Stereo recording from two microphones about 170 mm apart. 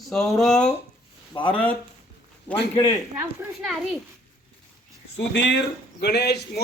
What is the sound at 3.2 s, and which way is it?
Speech, 5° right (ahead or behind).